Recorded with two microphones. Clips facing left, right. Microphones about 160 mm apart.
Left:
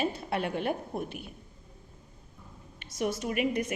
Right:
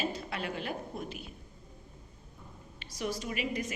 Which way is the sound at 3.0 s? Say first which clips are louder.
Left 5 dB; 50° left (ahead or behind).